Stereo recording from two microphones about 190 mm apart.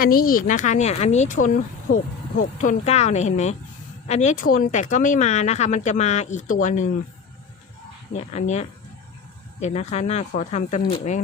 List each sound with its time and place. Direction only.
0.0 s speech: 50° left (ahead or behind)
2.6 s speech: 40° left (ahead or behind)
8.1 s speech: 35° left (ahead or behind)